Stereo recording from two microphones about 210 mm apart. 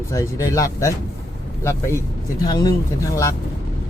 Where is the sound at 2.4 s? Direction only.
20° left (ahead or behind).